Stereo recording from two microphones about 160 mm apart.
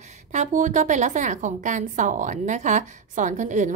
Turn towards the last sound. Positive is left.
turn(degrees=-50)  # may be behind; listen again after turning